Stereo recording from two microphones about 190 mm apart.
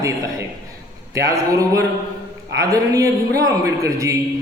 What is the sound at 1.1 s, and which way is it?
A man's voice, 15° right (ahead or behind).